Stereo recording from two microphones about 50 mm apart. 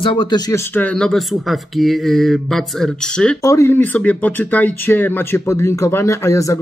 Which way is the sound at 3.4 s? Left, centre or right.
Left.